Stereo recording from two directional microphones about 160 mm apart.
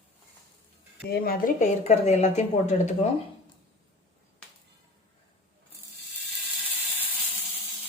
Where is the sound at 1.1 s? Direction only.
70° left (ahead or behind).